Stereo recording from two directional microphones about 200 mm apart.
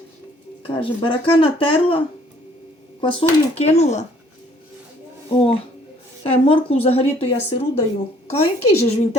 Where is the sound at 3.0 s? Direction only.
25° left (ahead or behind).